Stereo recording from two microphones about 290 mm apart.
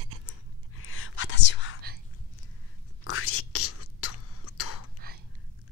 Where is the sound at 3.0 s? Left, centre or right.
Left.